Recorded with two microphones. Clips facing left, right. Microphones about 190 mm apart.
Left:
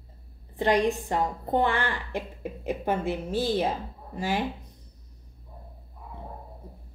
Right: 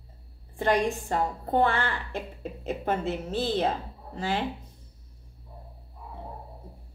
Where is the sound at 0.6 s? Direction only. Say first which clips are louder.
Left 2 dB; 15° left (ahead or behind).